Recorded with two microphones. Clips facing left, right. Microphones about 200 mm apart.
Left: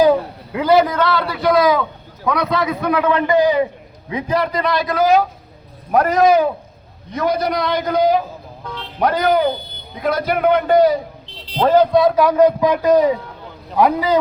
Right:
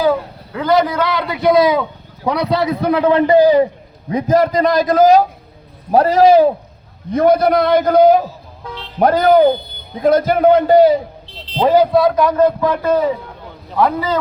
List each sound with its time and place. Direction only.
0.0 s a sound: 15° left (ahead or behind)
0.9 s a man's voice: 10° right (ahead or behind); by 6.5 s 30° right (ahead or behind)
7.1 s a man's voice: 55° right (ahead or behind)
10.2 s a man's voice: 30° right (ahead or behind)
11.6 s a man's voice: 10° right (ahead or behind); by 14.2 s 15° left (ahead or behind)